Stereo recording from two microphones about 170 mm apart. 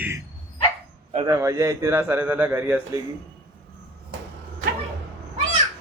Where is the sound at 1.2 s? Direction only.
20° right (ahead or behind).